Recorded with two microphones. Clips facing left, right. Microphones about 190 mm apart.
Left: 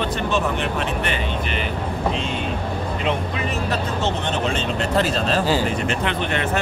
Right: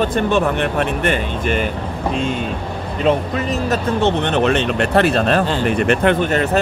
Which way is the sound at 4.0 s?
60° right (ahead or behind).